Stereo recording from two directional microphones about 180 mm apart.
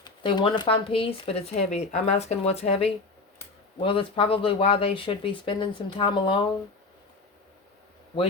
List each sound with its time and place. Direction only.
0.0 s speech: 25° left (ahead or behind)